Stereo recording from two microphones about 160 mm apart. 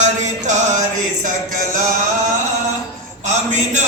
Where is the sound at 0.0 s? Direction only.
50° right (ahead or behind).